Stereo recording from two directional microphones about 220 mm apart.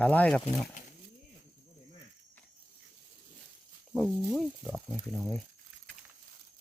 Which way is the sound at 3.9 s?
Centre (ahead or behind).